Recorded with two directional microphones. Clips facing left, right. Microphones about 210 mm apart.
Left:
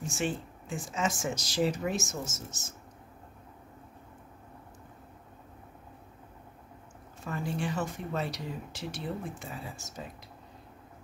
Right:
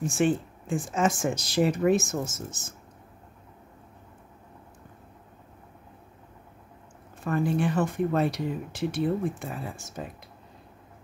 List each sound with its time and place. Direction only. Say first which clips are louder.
0.0 s speech: right 8 dB; 55° right (ahead or behind)
7.2 s speech: right 8 dB; 55° right (ahead or behind)